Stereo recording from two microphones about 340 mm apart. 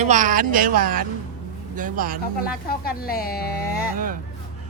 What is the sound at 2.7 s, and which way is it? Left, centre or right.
Speech, left.